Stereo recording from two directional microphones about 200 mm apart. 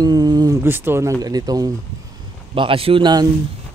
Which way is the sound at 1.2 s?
20° right (ahead or behind).